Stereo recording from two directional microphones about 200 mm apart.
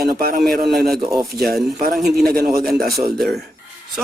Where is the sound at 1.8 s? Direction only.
45° right (ahead or behind).